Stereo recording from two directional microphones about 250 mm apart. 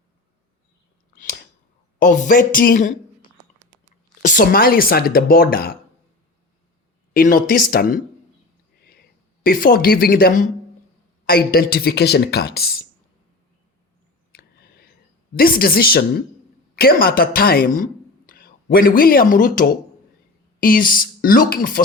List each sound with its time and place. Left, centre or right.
1.1 s a sound: left
2.0 s a woman's voice: left
7.1 s speech: left
9.4 s speech: left
14.3 s a sound: left
15.4 s speech: left